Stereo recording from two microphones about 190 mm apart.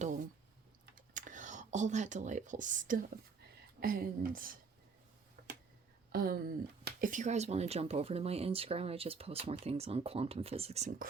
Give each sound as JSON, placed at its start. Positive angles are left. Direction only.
{"t": 1.1, "sound": "a woman's voice", "side_deg": -40}
{"t": 5.4, "sound": "a sound", "side_deg": -55}
{"t": 6.1, "sound": "speech", "side_deg": -55}